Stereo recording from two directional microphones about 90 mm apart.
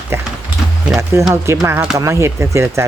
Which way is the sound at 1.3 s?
30° right (ahead or behind).